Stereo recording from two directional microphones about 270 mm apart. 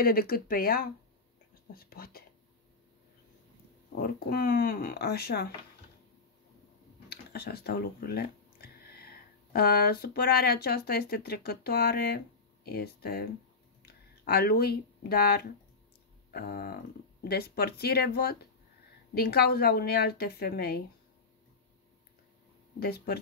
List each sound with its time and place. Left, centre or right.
0.0 s speech: left
3.9 s speech: left
7.1 s speech: left
22.8 s speech: left